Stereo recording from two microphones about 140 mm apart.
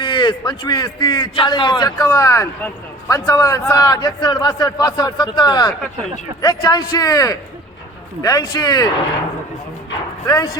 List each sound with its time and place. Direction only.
0.0 s a man's voice: 35° left (ahead or behind)
2.0 s a man's voice: 15° left (ahead or behind)
10.2 s a man's voice: 25° left (ahead or behind)